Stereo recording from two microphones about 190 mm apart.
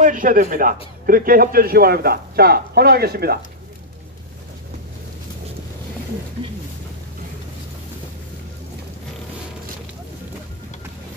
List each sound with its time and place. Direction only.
0.0 s a man's voice: 45° right (ahead or behind)